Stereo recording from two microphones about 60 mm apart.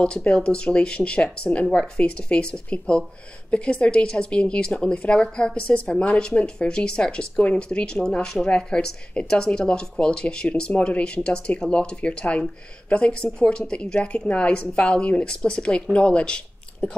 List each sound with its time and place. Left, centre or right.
0.0 s speech: centre